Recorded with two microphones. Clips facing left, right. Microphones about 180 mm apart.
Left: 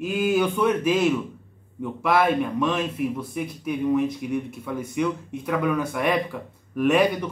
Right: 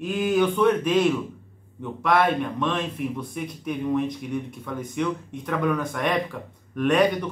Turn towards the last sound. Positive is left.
turn(degrees=5)  # may be behind; listen again after turning